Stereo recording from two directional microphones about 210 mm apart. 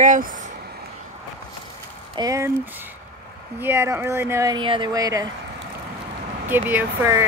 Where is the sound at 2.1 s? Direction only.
15° right (ahead or behind).